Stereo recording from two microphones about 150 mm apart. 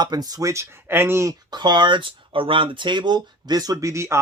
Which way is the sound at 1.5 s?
30° right (ahead or behind).